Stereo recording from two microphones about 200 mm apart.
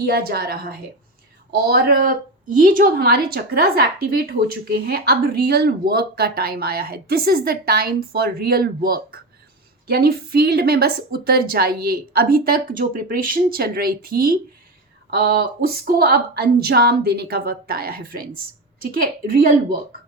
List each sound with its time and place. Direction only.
0.0 s a woman's voice: 50° right (ahead or behind)